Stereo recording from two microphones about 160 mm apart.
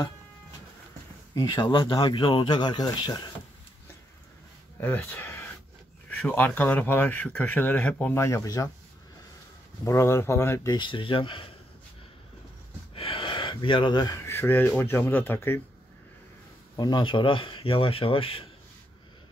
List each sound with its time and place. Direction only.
1.3 s a man's voice: 25° left (ahead or behind)
4.7 s speech: 10° left (ahead or behind)
9.8 s a man's voice: 20° left (ahead or behind)
12.9 s gasp: 35° left (ahead or behind)
14.2 s speech: 15° left (ahead or behind)
16.7 s speech: 25° left (ahead or behind)